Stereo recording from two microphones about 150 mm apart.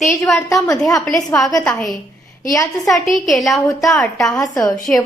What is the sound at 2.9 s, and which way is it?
A woman's voice, centre (ahead or behind).